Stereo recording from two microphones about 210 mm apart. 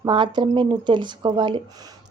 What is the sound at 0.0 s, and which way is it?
A woman's voice, 20° right (ahead or behind).